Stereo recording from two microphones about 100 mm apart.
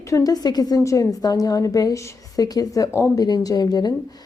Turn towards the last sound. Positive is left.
turn(degrees=40)  # may be behind; listen again after turning